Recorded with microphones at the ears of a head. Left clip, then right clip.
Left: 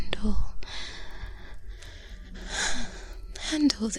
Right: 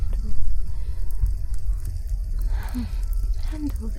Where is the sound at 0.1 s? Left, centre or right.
Left.